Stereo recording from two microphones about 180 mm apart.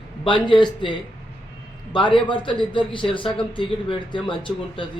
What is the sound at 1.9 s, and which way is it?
Speech, 25° left (ahead or behind).